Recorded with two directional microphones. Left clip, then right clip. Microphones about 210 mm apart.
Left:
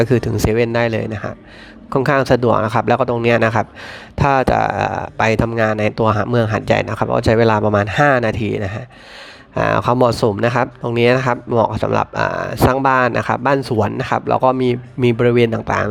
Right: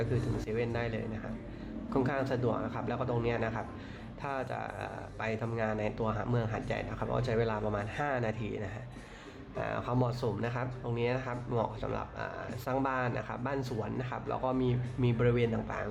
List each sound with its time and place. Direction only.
0.0 s speech: 55° left (ahead or behind)